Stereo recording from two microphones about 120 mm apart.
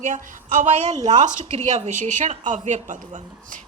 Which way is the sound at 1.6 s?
70° right (ahead or behind).